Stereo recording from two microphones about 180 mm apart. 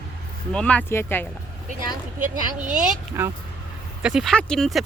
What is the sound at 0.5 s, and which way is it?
Speech, 5° left (ahead or behind).